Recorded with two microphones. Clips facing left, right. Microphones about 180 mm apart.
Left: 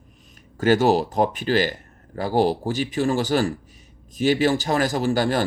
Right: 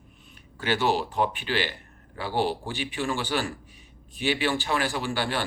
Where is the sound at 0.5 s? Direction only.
45° left (ahead or behind).